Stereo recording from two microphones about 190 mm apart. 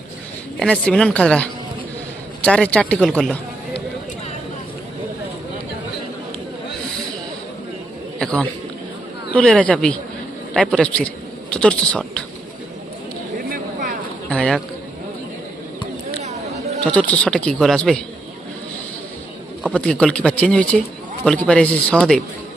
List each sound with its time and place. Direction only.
0.6 s speech: 5° left (ahead or behind)
8.2 s speech: 5° left (ahead or behind)
13.5 s a sound: 50° right (ahead or behind)
14.3 s speech: 5° left (ahead or behind)
16.2 s chatter: 35° right (ahead or behind)
16.8 s speech: 5° left (ahead or behind)
19.7 s speech: 5° left (ahead or behind)